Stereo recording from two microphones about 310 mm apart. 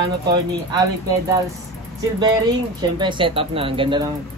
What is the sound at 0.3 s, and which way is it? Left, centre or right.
Speech, centre.